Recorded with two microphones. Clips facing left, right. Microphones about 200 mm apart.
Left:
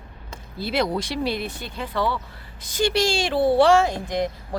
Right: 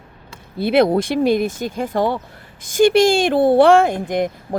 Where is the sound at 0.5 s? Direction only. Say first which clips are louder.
Right 9 dB; 55° right (ahead or behind).